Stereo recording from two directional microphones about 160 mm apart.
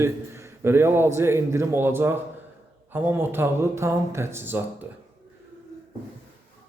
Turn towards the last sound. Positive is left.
turn(degrees=-15)  # may be behind; listen again after turning